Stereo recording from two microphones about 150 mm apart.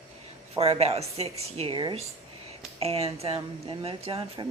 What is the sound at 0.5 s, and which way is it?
A woman's voice, 40° right (ahead or behind).